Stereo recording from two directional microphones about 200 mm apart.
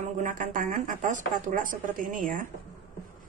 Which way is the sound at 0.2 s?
40° right (ahead or behind).